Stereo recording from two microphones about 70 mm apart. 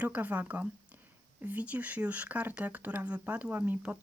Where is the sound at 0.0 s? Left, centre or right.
Right.